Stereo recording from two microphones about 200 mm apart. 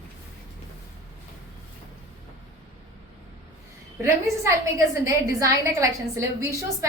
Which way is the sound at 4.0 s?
15° right (ahead or behind).